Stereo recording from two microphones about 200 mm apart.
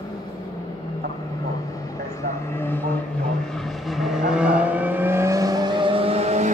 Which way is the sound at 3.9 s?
Centre (ahead or behind).